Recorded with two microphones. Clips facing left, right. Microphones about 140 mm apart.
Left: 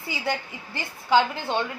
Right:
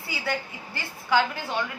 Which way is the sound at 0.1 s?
20° left (ahead or behind).